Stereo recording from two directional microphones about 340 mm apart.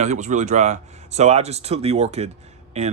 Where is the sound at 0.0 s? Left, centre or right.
Right.